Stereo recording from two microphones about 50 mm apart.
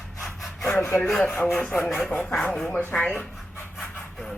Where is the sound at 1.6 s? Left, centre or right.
Left.